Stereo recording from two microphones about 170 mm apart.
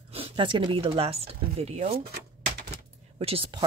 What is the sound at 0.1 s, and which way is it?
Speech, 30° right (ahead or behind).